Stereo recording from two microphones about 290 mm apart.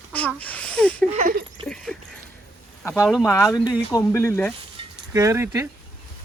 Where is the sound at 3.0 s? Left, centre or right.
Centre.